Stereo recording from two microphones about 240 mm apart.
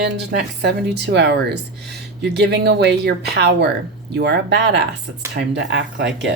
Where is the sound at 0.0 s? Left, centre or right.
Right.